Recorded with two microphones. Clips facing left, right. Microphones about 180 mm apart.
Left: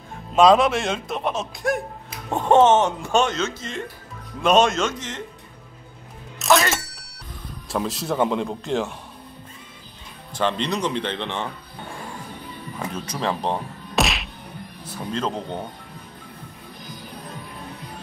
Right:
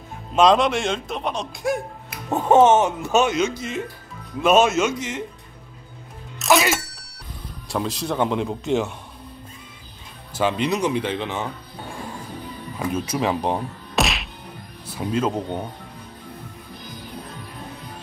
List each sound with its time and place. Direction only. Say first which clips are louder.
0.3 s speech: left 1 dB; centre (ahead or behind)
6.4 s music: right 1 dB; centre (ahead or behind)
7.7 s speech: even; centre (ahead or behind)
10.3 s speech: right 2 dB; 10° right (ahead or behind)
12.7 s speech: right 6 dB; 10° right (ahead or behind)
13.9 s whack: even; centre (ahead or behind)
15.0 s speech: right 4 dB; 10° right (ahead or behind)